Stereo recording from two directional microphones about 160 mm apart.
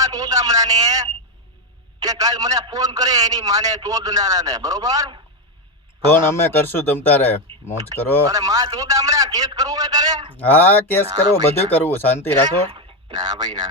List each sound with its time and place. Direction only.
0.0 s a man's voice: 25° right (ahead or behind)
6.1 s speech: 15° left (ahead or behind)
8.3 s a man's voice: 20° right (ahead or behind)
10.3 s speech: 10° left (ahead or behind)
12.7 s speech: 25° right (ahead or behind)